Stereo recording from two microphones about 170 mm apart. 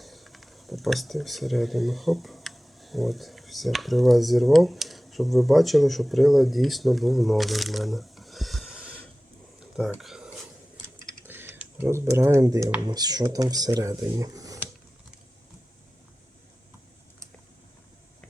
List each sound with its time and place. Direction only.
0.0 s speech: centre (ahead or behind)
11.2 s typing: 15° right (ahead or behind)
12.9 s speech: 20° right (ahead or behind)